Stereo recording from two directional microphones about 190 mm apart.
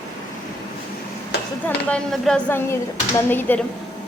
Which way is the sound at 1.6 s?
5° left (ahead or behind).